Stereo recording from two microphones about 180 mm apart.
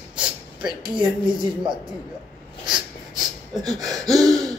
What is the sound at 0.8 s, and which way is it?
Speech, 25° right (ahead or behind).